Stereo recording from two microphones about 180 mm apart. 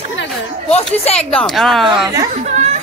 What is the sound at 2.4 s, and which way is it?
Chatter, 40° right (ahead or behind).